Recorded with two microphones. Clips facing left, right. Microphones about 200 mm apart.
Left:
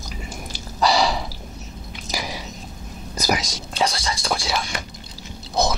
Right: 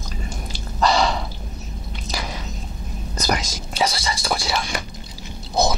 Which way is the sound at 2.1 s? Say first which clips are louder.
Left 1 dB; 10° left (ahead or behind).